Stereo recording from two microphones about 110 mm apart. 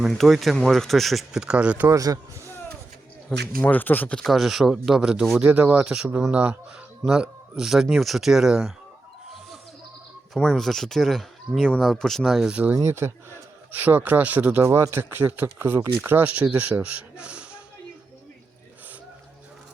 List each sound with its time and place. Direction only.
0.0 s speech: centre (ahead or behind)
1.9 s speech: 30° right (ahead or behind)
3.6 s speech: 15° left (ahead or behind)
4.2 s speech: centre (ahead or behind)
10.3 s speech: 5° left (ahead or behind)